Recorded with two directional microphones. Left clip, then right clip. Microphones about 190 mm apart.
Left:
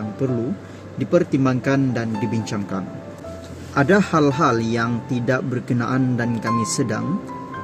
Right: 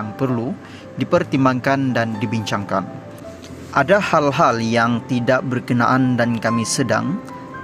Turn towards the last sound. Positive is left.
turn(degrees=-25)  # may be behind; listen again after turning